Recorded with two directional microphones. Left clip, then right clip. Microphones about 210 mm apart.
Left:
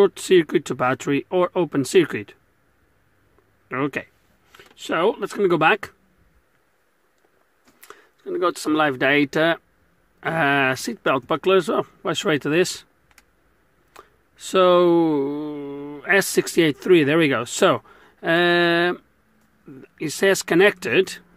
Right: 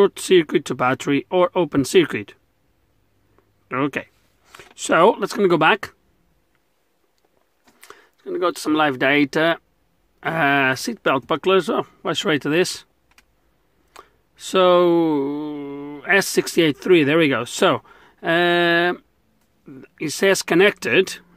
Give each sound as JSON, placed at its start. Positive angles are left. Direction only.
{"t": 0.0, "sound": "speech", "side_deg": -5}
{"t": 3.6, "sound": "speech", "side_deg": -10}
{"t": 4.5, "sound": "speech", "side_deg": -25}
{"t": 7.8, "sound": "speech", "side_deg": -5}
{"t": 13.9, "sound": "a sound", "side_deg": -5}
{"t": 16.3, "sound": "speech", "side_deg": -5}